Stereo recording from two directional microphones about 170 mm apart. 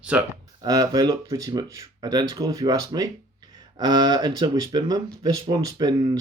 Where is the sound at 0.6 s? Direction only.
25° right (ahead or behind).